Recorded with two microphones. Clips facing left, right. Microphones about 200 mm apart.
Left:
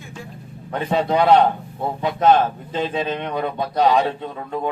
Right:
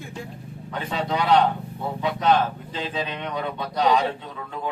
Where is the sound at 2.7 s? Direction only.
45° left (ahead or behind).